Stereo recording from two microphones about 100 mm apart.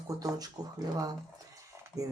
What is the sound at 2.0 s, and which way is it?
Speech, 35° right (ahead or behind).